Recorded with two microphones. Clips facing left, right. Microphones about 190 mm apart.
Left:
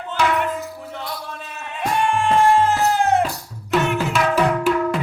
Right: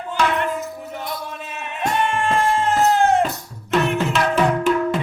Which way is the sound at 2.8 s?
Centre (ahead or behind).